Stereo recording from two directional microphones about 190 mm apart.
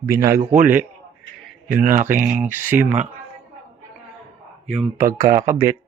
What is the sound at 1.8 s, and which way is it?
Speech, 45° right (ahead or behind).